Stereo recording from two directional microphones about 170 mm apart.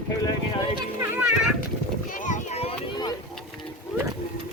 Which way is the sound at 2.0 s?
50° left (ahead or behind).